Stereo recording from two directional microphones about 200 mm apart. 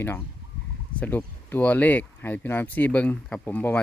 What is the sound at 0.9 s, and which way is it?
Speech, 10° left (ahead or behind).